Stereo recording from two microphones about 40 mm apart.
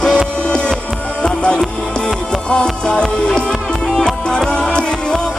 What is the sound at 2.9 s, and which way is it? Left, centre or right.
Music, centre.